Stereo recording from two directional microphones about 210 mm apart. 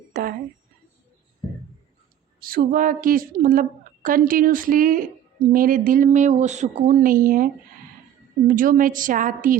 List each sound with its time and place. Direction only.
0.1 s a woman's voice: 45° right (ahead or behind)
2.4 s a woman's voice: 45° right (ahead or behind)